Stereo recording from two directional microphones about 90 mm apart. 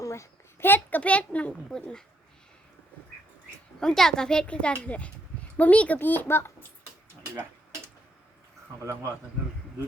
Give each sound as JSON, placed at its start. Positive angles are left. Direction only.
{"t": 0.0, "sound": "a child's voice", "side_deg": 30}
{"t": 3.8, "sound": "a child's voice", "side_deg": 5}
{"t": 8.8, "sound": "speech", "side_deg": -30}